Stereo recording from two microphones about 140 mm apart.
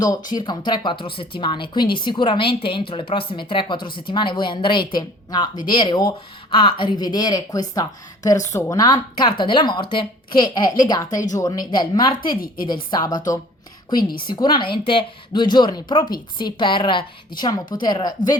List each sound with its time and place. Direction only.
0.3 s a woman's voice: 35° left (ahead or behind)
14.3 s a woman's voice: 30° left (ahead or behind)